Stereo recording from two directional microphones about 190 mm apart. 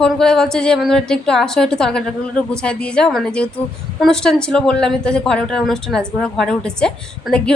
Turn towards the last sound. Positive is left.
turn(degrees=5)  # may be behind; listen again after turning